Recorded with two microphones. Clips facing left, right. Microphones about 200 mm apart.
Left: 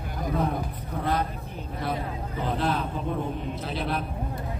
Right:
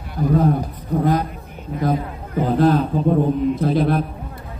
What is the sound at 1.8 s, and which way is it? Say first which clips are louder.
A man's voice: right 9 dB; 45° right (ahead or behind).